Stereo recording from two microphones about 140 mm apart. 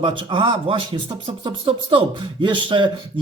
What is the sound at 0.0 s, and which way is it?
A man's voice, 35° right (ahead or behind).